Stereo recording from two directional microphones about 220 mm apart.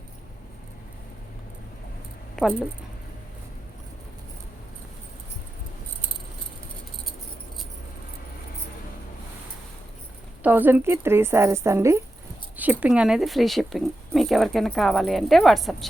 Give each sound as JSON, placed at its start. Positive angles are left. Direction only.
{"t": 10.4, "sound": "a woman's voice", "side_deg": -10}